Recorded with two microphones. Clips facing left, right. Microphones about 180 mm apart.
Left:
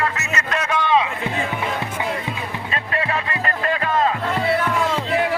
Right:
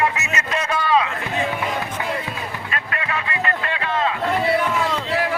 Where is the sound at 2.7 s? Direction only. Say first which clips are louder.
Left 5 dB; 35° left (ahead or behind).